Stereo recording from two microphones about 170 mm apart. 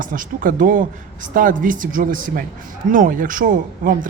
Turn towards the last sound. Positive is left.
turn(degrees=-50)  # may be behind; listen again after turning